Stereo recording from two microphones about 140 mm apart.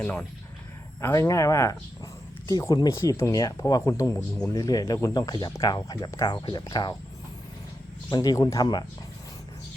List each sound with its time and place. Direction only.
0.0 s speech: 10° left (ahead or behind)
1.0 s speech: 20° left (ahead or behind)
8.1 s speech: 30° left (ahead or behind)